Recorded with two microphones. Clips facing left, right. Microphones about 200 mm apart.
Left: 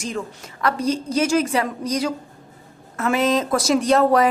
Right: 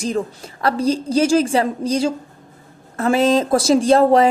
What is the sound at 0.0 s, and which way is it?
A woman's voice, 35° right (ahead or behind).